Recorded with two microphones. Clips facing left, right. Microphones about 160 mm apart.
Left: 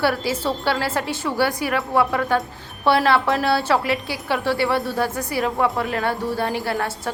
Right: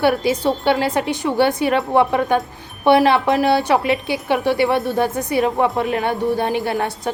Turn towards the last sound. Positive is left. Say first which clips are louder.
# right 3 dB
turn(degrees=-20)  # may be behind; listen again after turning